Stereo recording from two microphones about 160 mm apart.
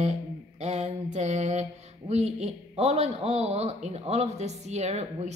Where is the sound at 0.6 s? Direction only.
45° right (ahead or behind).